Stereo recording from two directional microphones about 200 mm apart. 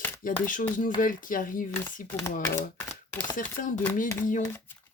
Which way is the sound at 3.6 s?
45° left (ahead or behind).